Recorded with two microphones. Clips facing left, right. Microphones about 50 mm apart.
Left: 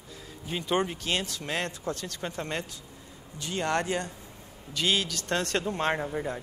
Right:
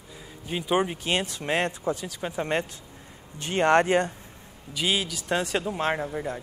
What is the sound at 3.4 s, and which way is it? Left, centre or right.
Speech, right.